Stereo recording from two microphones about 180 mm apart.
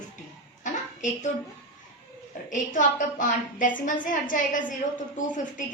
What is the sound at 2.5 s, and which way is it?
A woman's voice, 45° left (ahead or behind).